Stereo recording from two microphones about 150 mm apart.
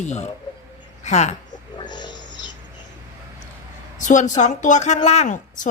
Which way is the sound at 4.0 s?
55° left (ahead or behind).